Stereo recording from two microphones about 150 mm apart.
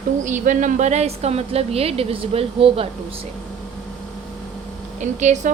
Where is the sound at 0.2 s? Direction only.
55° right (ahead or behind); by 2.9 s 40° right (ahead or behind).